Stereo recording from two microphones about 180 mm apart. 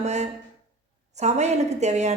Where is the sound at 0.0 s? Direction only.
40° right (ahead or behind).